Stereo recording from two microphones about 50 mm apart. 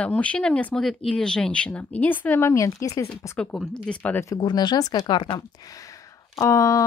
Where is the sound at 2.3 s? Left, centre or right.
Left.